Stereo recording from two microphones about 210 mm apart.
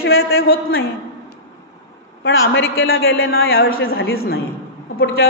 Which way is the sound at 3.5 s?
45° left (ahead or behind).